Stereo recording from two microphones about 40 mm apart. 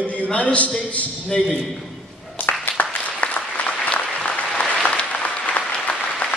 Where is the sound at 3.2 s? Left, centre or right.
Left.